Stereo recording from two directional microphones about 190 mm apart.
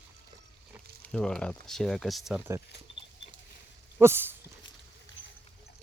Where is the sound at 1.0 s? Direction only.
5° left (ahead or behind).